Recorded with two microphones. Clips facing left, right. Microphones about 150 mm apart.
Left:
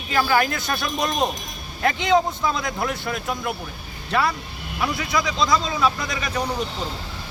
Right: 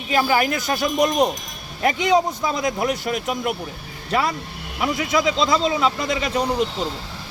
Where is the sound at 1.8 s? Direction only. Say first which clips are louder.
Right 1 dB; 15° right (ahead or behind).